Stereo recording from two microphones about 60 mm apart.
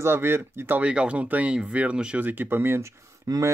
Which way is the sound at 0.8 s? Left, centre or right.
Centre.